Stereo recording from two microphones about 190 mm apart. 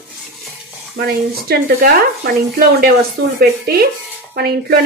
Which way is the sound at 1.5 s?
55° right (ahead or behind).